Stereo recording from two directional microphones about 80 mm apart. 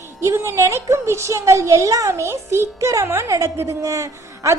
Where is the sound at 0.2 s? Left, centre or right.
Right.